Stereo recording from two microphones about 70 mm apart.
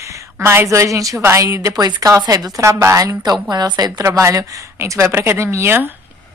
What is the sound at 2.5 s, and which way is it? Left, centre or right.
Speech, right.